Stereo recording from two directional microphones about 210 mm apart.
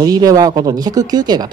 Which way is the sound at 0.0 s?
15° right (ahead or behind).